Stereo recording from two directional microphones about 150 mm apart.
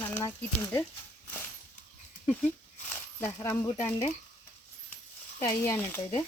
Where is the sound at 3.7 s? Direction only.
50° left (ahead or behind).